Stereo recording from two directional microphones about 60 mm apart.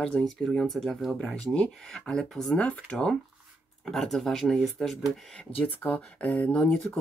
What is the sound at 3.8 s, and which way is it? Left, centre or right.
Speech, centre.